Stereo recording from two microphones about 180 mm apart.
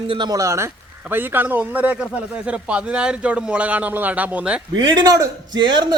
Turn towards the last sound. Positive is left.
turn(degrees=-25)  # may be behind; listen again after turning